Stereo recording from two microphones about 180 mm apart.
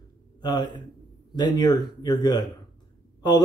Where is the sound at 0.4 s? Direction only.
25° left (ahead or behind).